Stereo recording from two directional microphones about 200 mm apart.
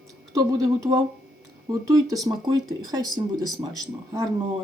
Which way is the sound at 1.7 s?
20° right (ahead or behind).